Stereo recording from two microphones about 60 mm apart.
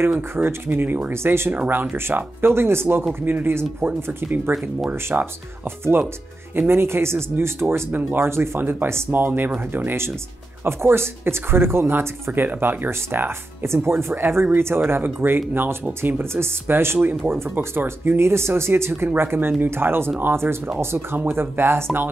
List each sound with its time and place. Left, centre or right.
0.0 s speech: right
1.1 s speech: right
5.1 s speech: right
6.7 s speech: right
7.9 s speech: right
12.3 s speech: right